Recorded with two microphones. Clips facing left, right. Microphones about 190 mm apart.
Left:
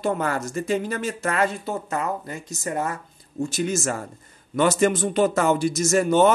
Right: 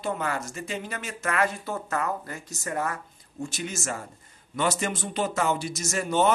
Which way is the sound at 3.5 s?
40° left (ahead or behind).